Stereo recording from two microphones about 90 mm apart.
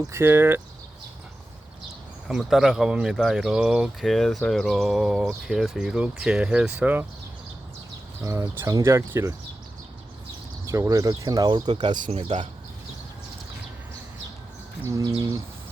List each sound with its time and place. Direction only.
0.1 s speech: 25° right (ahead or behind)
2.2 s speech: 5° right (ahead or behind)
8.2 s speech: 35° right (ahead or behind)
10.7 s speech: 40° right (ahead or behind)
11.4 s speech: 60° right (ahead or behind)
14.8 s speech: 35° right (ahead or behind)